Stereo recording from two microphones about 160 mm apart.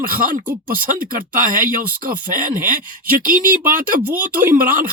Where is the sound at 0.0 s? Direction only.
60° right (ahead or behind).